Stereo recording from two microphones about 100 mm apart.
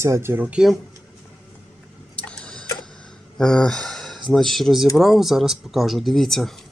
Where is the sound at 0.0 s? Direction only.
25° right (ahead or behind).